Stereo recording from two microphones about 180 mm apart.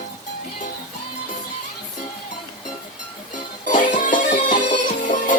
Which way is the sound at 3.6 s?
45° left (ahead or behind).